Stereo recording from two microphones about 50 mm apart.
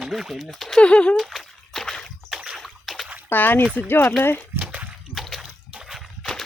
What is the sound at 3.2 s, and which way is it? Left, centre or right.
Speech, left.